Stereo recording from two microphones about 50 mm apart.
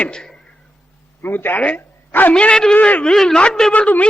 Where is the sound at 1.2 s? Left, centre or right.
Left.